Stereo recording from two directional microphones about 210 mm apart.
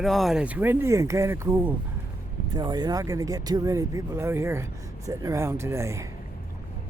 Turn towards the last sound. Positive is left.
turn(degrees=-15)  # may be behind; listen again after turning